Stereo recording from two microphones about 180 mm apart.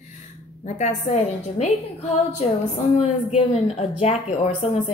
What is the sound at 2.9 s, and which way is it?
Speech, 35° left (ahead or behind).